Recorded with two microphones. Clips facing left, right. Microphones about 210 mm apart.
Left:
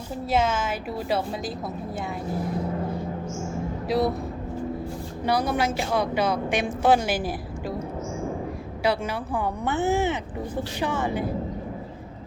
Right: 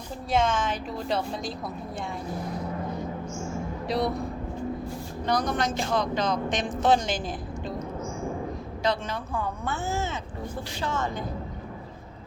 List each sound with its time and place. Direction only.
0.3 s speech: 5° left (ahead or behind)
3.8 s speech: 5° left (ahead or behind)
5.2 s speech: 10° left (ahead or behind)
8.8 s speech: 10° left (ahead or behind)